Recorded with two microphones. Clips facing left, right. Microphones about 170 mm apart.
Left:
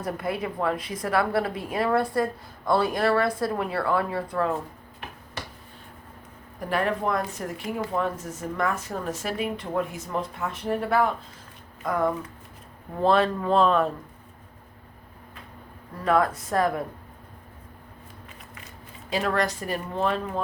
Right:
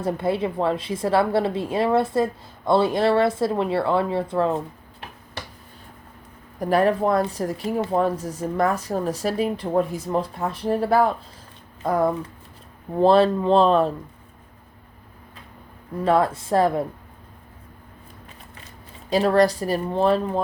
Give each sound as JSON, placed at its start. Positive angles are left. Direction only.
{"t": 0.0, "sound": "a woman's voice", "side_deg": -30}
{"t": 6.6, "sound": "speech", "side_deg": -35}
{"t": 16.0, "sound": "a woman's voice", "side_deg": -30}
{"t": 19.1, "sound": "speech", "side_deg": -35}